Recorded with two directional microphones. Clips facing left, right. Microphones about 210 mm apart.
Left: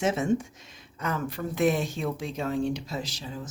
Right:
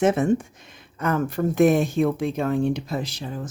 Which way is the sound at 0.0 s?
55° right (ahead or behind).